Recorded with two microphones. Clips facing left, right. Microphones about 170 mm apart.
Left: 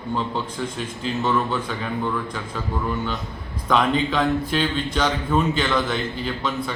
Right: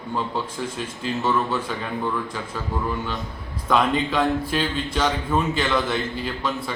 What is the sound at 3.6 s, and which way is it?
A man's voice, 5° right (ahead or behind).